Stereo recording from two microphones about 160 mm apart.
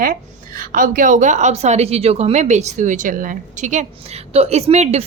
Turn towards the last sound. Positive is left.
turn(degrees=-45)  # may be behind; listen again after turning